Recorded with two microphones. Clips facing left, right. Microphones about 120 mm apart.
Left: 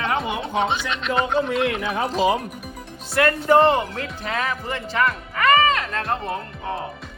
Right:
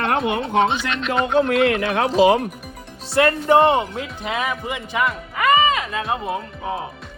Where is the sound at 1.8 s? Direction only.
70° right (ahead or behind).